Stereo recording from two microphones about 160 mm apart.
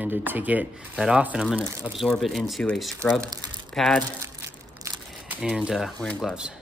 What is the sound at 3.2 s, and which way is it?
Speech, 25° right (ahead or behind).